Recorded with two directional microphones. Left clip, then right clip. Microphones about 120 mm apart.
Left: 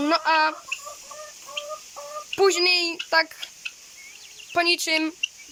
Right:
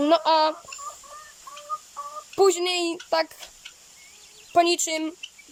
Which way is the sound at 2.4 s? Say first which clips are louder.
Left 1 dB; 35° right (ahead or behind).